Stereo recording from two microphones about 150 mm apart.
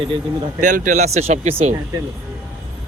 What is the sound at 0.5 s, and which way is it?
Speech, 60° right (ahead or behind).